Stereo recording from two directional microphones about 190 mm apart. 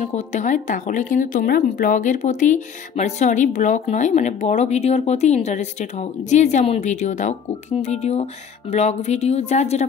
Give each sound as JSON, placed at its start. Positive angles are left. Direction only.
{"t": 0.0, "sound": "a woman's voice", "side_deg": 40}